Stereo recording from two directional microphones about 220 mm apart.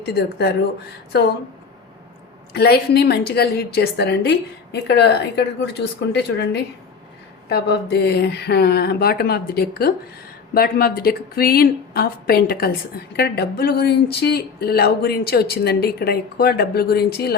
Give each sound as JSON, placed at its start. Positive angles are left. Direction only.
{"t": 0.0, "sound": "speech", "side_deg": 50}
{"t": 2.5, "sound": "speech", "side_deg": 45}